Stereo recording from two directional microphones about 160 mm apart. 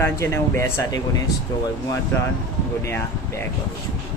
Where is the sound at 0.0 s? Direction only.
15° left (ahead or behind).